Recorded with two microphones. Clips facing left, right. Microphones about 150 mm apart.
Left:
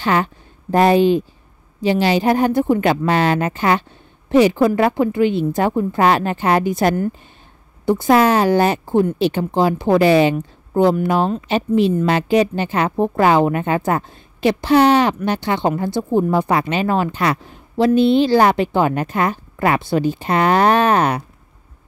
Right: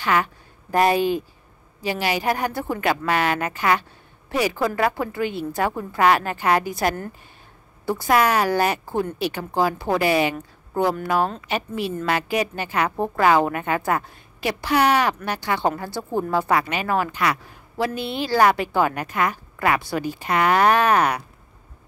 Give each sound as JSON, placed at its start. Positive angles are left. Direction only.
{"t": 0.0, "sound": "a woman's voice", "side_deg": 25}